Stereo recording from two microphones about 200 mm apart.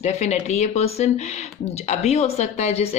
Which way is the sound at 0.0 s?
35° left (ahead or behind).